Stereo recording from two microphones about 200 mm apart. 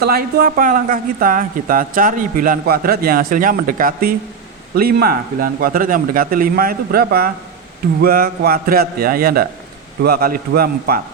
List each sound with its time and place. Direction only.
0.0 s speech: 50° right (ahead or behind)